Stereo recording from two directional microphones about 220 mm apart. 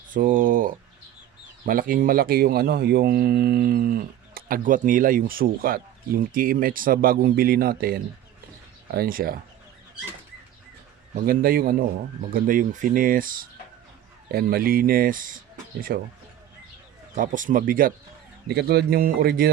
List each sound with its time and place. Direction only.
0.1 s a sound: 35° right (ahead or behind)
1.6 s speech: 40° right (ahead or behind)
11.1 s speech: 40° right (ahead or behind)
17.2 s speech: 35° right (ahead or behind)